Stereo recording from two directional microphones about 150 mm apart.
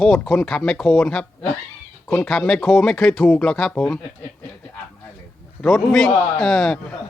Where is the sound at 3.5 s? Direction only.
5° left (ahead or behind).